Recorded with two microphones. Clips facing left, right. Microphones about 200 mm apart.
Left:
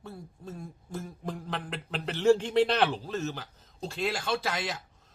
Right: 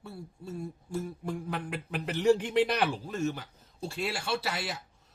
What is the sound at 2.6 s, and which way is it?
Speech, 15° right (ahead or behind).